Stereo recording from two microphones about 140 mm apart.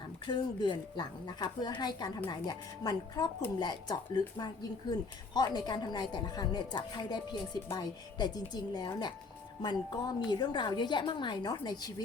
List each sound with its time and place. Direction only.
0.3 s a woman's voice: 35° left (ahead or behind)